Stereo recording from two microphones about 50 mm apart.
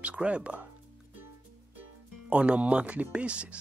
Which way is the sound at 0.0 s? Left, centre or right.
Right.